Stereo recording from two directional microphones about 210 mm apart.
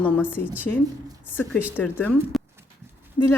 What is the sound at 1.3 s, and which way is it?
A woman's voice, 10° left (ahead or behind).